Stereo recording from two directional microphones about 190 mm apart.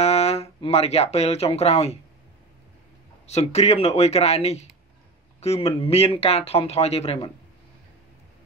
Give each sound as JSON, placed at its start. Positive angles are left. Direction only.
{"t": 0.0, "sound": "speech", "side_deg": 35}
{"t": 3.3, "sound": "speech", "side_deg": 35}